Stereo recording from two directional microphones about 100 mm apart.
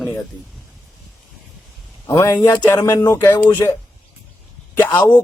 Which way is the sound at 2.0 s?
30° left (ahead or behind).